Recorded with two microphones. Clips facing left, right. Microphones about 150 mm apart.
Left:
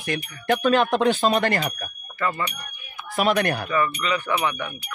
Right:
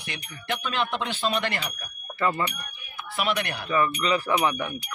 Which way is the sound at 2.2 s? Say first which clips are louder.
Right 1 dB; 30° right (ahead or behind).